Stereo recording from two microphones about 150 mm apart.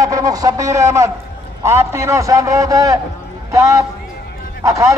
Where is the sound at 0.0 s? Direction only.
25° right (ahead or behind).